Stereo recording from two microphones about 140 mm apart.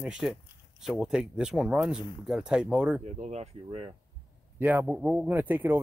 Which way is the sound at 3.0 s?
50° right (ahead or behind).